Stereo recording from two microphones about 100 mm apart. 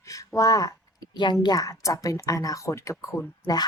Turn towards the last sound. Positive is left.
turn(degrees=35)  # may be behind; listen again after turning